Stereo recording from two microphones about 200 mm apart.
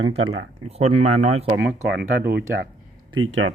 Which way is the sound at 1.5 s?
60° right (ahead or behind).